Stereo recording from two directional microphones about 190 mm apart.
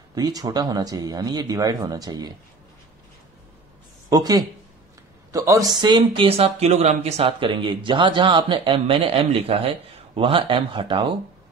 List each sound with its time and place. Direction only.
0.1 s speech: 20° right (ahead or behind)
4.1 s speech: 20° right (ahead or behind)